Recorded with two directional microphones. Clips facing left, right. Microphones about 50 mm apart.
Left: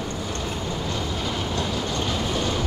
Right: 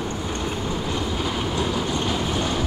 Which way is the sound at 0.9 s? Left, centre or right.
Centre.